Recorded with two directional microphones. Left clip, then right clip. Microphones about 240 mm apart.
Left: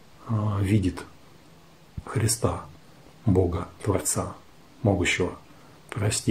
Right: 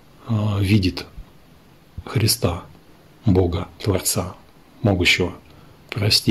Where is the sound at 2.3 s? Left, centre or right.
Right.